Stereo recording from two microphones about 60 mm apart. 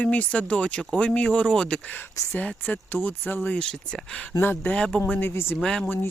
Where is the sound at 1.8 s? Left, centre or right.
Left.